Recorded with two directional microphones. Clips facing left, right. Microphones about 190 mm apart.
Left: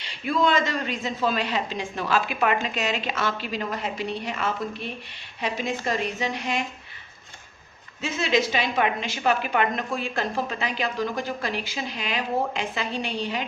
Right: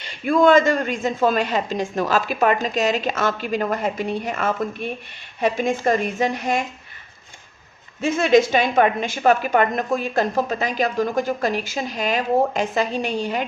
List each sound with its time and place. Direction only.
0.0 s a woman's voice: 50° right (ahead or behind)
8.0 s a woman's voice: 50° right (ahead or behind)